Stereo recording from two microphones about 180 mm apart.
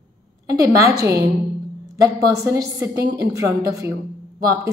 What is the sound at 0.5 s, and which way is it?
Speech, 15° right (ahead or behind).